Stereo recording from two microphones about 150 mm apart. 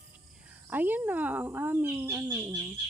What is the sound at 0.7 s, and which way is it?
Speech, 10° right (ahead or behind).